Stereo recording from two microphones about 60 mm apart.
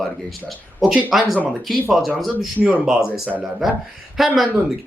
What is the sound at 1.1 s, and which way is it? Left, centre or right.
Speech, centre.